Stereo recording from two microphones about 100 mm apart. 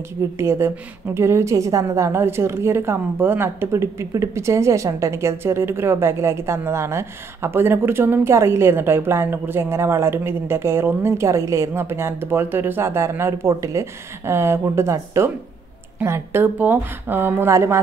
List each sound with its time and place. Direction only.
0.4 s a woman's voice: 25° right (ahead or behind)